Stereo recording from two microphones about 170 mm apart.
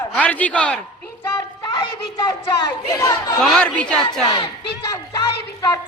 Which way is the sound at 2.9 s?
20° left (ahead or behind).